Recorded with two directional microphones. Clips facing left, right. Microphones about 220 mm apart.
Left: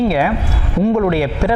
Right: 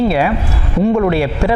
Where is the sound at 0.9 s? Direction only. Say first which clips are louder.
Right 1 dB; 25° right (ahead or behind).